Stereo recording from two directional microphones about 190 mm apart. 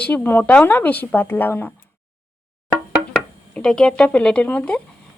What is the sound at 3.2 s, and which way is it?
Speech, 5° left (ahead or behind).